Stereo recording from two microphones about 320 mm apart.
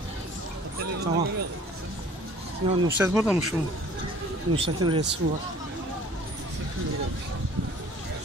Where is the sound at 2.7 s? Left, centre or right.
Centre.